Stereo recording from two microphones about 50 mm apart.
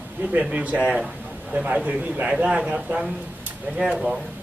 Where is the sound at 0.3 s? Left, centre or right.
Right.